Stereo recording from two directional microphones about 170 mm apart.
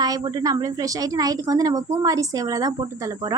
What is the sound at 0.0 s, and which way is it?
A woman's voice, 20° right (ahead or behind).